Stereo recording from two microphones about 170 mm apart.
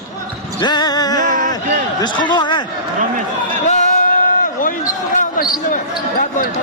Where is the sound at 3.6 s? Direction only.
50° left (ahead or behind).